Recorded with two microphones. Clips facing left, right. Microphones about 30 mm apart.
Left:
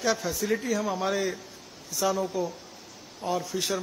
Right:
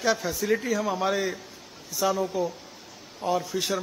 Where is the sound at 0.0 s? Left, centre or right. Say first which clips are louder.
Right 2 dB; centre.